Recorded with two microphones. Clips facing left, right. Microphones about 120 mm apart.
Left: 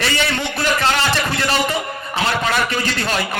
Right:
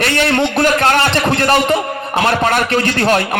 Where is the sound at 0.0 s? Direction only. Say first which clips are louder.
Right 6 dB; 55° right (ahead or behind).